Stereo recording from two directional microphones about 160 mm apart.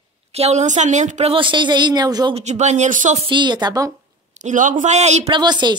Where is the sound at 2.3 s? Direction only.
45° right (ahead or behind).